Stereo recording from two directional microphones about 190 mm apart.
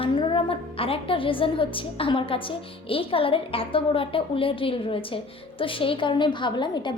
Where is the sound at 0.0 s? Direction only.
25° left (ahead or behind).